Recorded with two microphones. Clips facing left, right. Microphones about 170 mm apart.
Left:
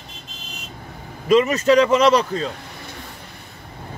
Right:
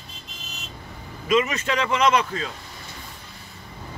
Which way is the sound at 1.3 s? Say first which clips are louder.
Left 8 dB; 35° left (ahead or behind).